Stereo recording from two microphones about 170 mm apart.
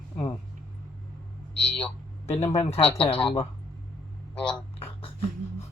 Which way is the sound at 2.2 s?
40° left (ahead or behind).